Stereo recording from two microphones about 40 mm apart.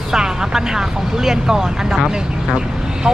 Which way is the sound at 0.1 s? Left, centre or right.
Centre.